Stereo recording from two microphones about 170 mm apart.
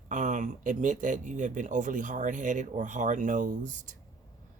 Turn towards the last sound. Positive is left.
turn(degrees=-45)  # may be behind; listen again after turning